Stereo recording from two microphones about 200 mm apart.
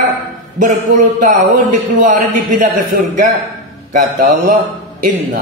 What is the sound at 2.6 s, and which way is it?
A man's voice, 40° right (ahead or behind).